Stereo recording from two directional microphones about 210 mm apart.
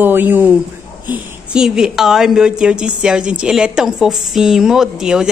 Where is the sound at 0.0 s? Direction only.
10° right (ahead or behind).